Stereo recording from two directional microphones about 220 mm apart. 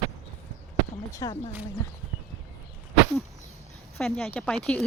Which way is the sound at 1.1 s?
15° left (ahead or behind).